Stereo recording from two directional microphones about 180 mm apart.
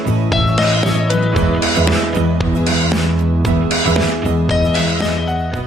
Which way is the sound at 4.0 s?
Centre (ahead or behind).